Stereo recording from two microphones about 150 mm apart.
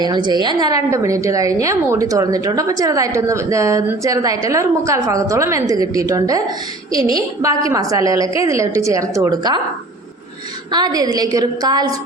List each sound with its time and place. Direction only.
0.0 s a woman's voice: 30° right (ahead or behind)
10.7 s a woman's voice: 25° right (ahead or behind)